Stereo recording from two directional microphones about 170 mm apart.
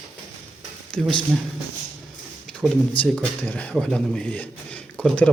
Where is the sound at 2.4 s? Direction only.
5° left (ahead or behind).